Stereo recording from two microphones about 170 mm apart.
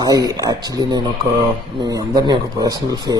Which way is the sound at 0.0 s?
20° right (ahead or behind).